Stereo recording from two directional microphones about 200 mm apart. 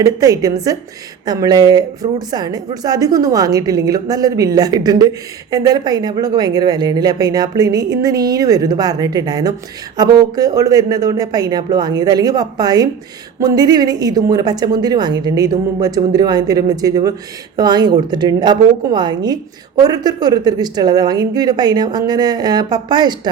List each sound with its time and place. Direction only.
0.0 s a woman's voice: 15° right (ahead or behind)